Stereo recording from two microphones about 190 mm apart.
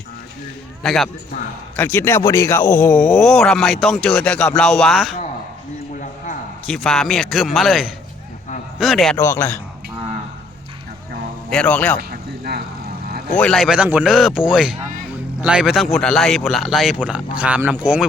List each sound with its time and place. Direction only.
0.8 s speech: centre (ahead or behind)
6.7 s speech: centre (ahead or behind)
9.1 s speech: 15° left (ahead or behind)
11.4 s speech: 5° left (ahead or behind)
11.9 s a sound: 55° right (ahead or behind)
13.3 s speech: 5° left (ahead or behind)